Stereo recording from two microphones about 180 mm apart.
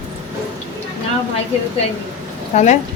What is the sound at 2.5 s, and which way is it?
Speech, 40° left (ahead or behind).